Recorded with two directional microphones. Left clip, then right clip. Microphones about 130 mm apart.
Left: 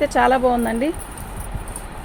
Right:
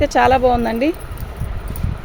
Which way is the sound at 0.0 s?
85° right.